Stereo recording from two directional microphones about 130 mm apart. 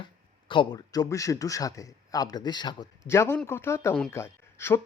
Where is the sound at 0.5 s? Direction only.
30° left (ahead or behind).